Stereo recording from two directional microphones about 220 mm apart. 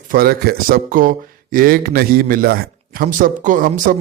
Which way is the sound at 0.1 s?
45° right (ahead or behind).